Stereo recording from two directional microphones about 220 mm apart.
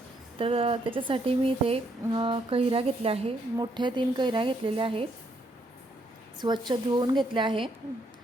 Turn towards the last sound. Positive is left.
turn(degrees=-20)  # may be behind; listen again after turning